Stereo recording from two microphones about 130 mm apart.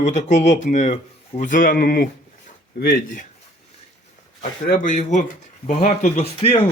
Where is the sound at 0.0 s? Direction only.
70° left (ahead or behind).